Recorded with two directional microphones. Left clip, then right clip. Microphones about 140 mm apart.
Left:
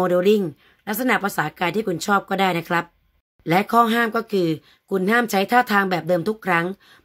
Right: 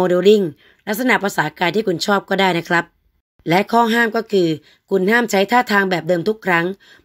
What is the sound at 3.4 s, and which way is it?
Speech, 20° right (ahead or behind).